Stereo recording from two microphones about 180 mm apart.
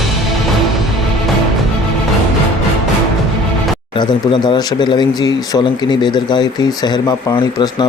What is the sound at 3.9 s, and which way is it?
Speech, 25° left (ahead or behind).